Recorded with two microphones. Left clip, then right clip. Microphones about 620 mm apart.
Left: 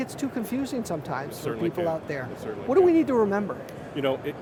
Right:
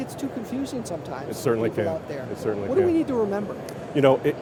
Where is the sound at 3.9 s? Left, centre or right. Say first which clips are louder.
Right 8 dB; right.